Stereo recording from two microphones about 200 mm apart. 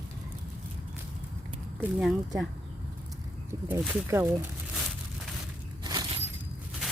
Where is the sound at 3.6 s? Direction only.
10° right (ahead or behind).